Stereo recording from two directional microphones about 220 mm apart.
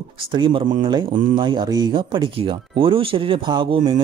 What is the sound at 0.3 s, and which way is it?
Speech, 25° right (ahead or behind).